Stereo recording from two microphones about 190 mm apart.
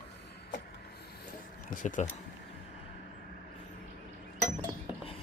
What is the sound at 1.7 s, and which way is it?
Speech, 45° left (ahead or behind).